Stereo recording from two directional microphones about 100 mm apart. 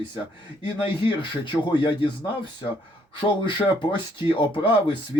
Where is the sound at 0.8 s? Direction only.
55° left (ahead or behind).